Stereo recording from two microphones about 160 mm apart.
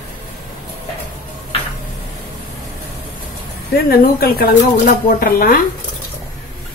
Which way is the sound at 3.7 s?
70° left (ahead or behind).